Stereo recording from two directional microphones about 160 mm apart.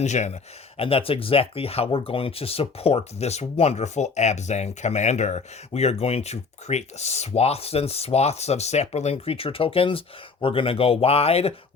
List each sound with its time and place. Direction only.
0.0 s speech: 45° left (ahead or behind)
0.8 s speech: 35° left (ahead or behind)